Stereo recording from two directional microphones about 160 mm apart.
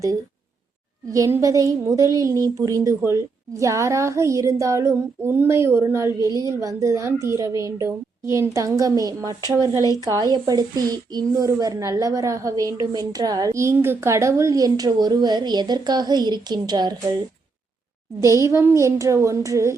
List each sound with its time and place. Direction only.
1.1 s a woman's voice: 20° right (ahead or behind)
18.2 s a woman's voice: 20° right (ahead or behind)